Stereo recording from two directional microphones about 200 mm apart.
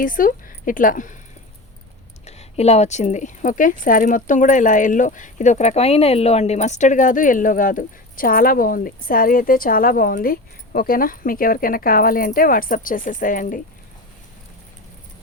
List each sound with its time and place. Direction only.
0.0 s speech: 45° left (ahead or behind)
2.2 s a woman's voice: 30° left (ahead or behind)